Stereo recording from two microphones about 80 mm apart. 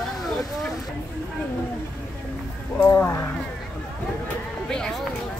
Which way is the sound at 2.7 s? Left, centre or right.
Left.